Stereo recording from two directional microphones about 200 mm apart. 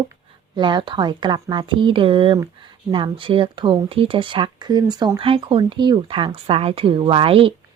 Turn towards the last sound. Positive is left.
turn(degrees=-25)  # may be behind; listen again after turning